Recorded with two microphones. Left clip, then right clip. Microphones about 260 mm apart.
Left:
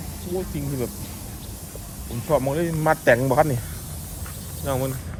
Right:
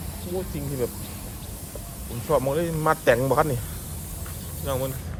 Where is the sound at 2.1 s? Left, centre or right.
Centre.